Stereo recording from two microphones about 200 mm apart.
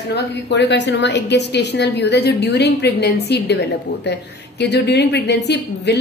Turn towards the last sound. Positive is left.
turn(degrees=55)  # may be behind; listen again after turning